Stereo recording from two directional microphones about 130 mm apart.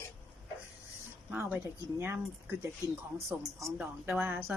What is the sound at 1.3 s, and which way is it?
Speech, 15° right (ahead or behind).